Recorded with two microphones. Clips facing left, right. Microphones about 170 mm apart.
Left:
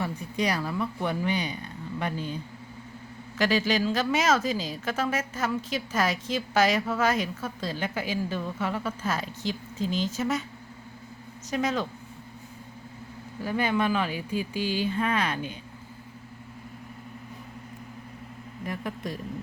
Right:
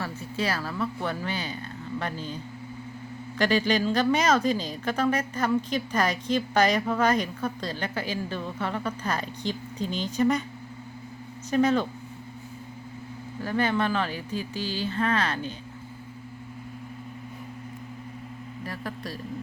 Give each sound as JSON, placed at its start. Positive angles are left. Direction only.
{"t": 0.0, "sound": "a woman's voice", "side_deg": 15}
{"t": 11.5, "sound": "a woman's voice", "side_deg": 0}
{"t": 13.4, "sound": "speech", "side_deg": 10}
{"t": 18.6, "sound": "speech", "side_deg": 15}